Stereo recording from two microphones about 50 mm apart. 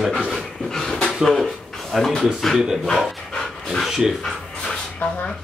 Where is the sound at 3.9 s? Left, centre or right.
Centre.